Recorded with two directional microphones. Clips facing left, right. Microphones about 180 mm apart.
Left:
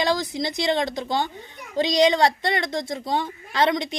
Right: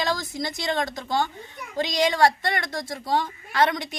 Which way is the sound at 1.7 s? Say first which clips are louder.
Left 3 dB; 20° left (ahead or behind).